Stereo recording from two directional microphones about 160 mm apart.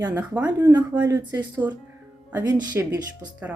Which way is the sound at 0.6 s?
25° right (ahead or behind).